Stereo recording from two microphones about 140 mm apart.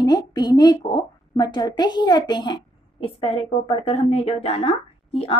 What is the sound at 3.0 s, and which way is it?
A woman's voice, 45° left (ahead or behind).